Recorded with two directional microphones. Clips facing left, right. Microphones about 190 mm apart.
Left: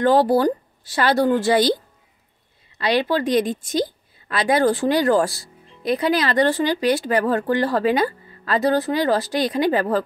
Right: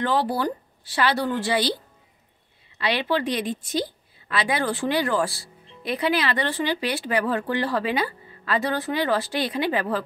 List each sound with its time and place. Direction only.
0.0 s a woman's voice: 45° left (ahead or behind)
2.8 s a woman's voice: 40° left (ahead or behind)